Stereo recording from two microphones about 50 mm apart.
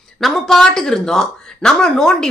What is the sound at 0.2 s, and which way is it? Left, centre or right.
Speech, centre.